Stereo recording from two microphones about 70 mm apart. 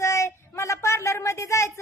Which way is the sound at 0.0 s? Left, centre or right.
Left.